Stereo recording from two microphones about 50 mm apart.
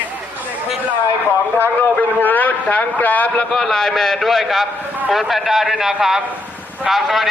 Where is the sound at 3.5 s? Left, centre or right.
Centre.